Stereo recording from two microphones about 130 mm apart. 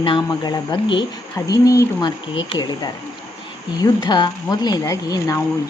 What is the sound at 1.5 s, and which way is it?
A woman's voice, 25° left (ahead or behind).